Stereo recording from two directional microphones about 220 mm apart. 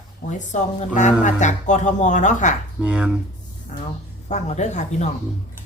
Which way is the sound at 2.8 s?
5° right (ahead or behind).